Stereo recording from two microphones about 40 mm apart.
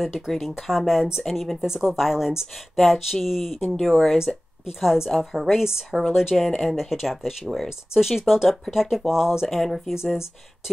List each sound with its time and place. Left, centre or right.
0.3 s speech: centre
0.7 s speech: centre
1.2 s speech: centre
5.9 s speech: centre
6.8 s speech: centre
9.5 s speech: centre